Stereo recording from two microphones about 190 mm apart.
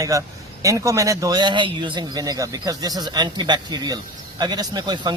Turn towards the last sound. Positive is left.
turn(degrees=-20)  # may be behind; listen again after turning